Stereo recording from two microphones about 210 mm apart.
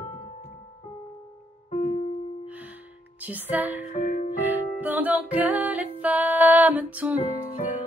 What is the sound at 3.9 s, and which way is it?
Music, 40° left (ahead or behind).